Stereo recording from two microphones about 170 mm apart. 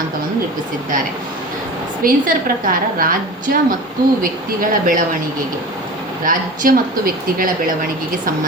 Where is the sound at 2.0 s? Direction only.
55° right (ahead or behind).